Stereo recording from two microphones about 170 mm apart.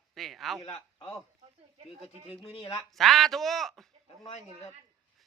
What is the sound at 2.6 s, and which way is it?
Speech, 20° left (ahead or behind).